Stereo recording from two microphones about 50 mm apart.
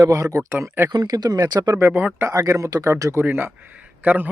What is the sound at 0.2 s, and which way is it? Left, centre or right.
Speech, right.